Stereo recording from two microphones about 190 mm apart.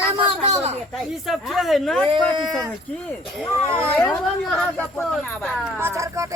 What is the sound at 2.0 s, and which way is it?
Speech, 25° right (ahead or behind).